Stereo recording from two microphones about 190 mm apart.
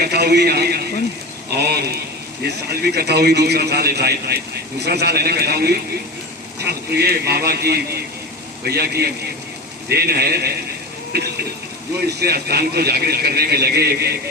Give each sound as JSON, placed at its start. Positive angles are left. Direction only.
{"t": 0.0, "sound": "a man's voice", "side_deg": -60}